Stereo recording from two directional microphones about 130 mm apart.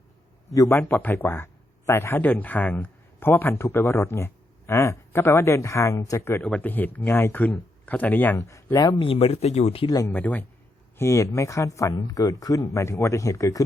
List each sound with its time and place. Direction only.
0.5 s a man's voice: 25° left (ahead or behind)
8.4 s speech: 25° left (ahead or behind); by 9.9 s 50° left (ahead or behind)
10.1 s a man's voice: 10° left (ahead or behind)